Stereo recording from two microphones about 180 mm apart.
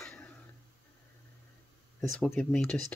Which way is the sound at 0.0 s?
10° left (ahead or behind).